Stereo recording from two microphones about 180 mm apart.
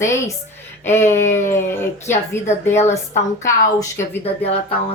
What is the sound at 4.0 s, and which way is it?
Speech, 35° left (ahead or behind).